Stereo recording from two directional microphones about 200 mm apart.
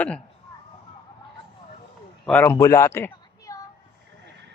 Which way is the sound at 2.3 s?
5° left (ahead or behind).